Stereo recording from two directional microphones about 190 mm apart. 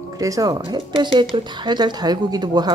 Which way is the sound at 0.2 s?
20° right (ahead or behind).